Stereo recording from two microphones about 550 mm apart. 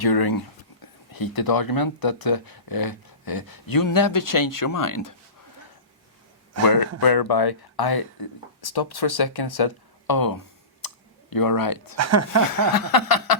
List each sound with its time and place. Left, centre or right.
0.0 s speech: left
6.5 s speech: right
7.0 s speech: left
10.8 s clicking: left
11.9 s speech: right
12.7 s speech: left